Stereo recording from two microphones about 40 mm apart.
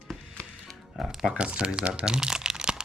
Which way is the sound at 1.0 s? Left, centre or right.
Centre.